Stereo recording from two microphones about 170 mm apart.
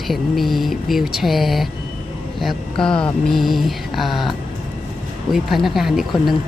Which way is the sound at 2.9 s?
30° left (ahead or behind).